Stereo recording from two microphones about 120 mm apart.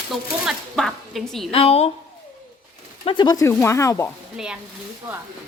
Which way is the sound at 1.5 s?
55° left (ahead or behind).